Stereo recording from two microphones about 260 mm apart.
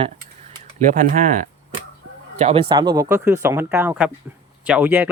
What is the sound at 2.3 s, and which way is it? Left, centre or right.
Speech, right.